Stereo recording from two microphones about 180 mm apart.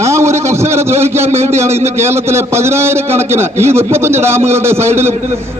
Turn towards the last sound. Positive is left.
turn(degrees=-15)  # may be behind; listen again after turning